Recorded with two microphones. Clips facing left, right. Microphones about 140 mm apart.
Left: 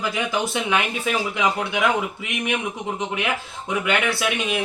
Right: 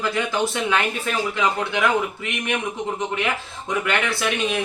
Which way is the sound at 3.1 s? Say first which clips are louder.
Right 1 dB; 10° left (ahead or behind).